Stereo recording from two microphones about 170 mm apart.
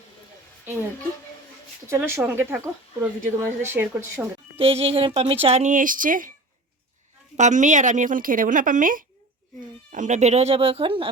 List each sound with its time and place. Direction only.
0.6 s a woman's voice: 10° right (ahead or behind)
1.9 s speech: 15° right (ahead or behind)
4.5 s speech: 35° right (ahead or behind); by 6.3 s 55° right (ahead or behind)
7.3 s a woman's voice: 45° right (ahead or behind); by 11.1 s 30° right (ahead or behind)